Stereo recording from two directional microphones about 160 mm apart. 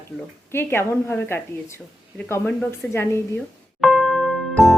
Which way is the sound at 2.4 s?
10° left (ahead or behind).